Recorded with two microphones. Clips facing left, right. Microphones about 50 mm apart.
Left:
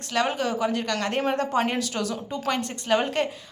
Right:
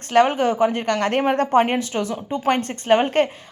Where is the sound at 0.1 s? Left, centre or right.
Right.